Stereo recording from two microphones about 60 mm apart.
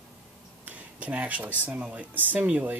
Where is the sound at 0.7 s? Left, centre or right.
Right.